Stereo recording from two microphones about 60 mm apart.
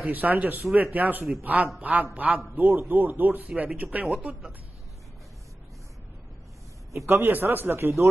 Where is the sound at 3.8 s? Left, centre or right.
Centre.